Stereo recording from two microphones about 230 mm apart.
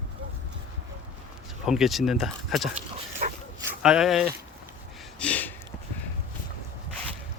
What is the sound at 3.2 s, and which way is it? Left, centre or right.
Dog, right.